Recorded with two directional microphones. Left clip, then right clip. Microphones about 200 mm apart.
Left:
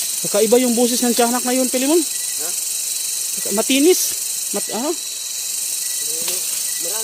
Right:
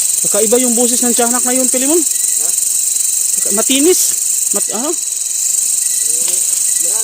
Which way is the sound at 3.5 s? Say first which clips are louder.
Right 2 dB; 25° right (ahead or behind).